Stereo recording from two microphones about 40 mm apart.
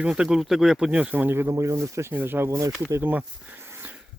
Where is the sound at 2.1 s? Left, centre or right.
Right.